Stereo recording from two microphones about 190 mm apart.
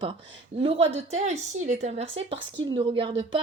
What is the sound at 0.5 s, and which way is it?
A woman's voice, 30° right (ahead or behind).